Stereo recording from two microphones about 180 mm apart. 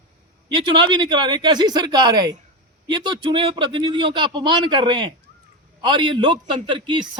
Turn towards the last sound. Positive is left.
turn(degrees=-25)  # may be behind; listen again after turning